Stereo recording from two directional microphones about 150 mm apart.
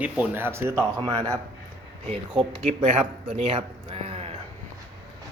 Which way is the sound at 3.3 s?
40° right (ahead or behind).